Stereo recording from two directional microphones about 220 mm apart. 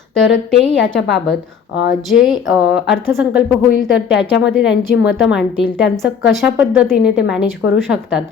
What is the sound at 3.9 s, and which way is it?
Speech, 55° left (ahead or behind).